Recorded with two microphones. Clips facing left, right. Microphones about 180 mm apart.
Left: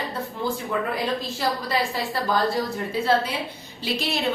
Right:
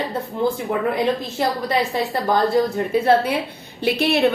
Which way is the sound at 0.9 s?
20° right (ahead or behind).